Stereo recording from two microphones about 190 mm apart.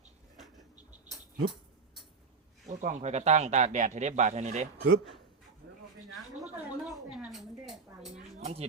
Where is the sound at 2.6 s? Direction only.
40° right (ahead or behind).